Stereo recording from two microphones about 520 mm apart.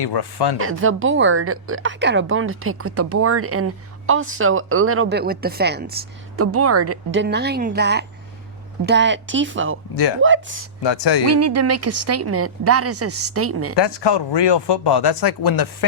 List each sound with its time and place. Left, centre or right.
0.0 s speech: left
0.6 s a woman's voice: right
9.9 s speech: left
10.2 s speech: right
10.8 s speech: left
11.3 s a woman's voice: right
13.7 s speech: left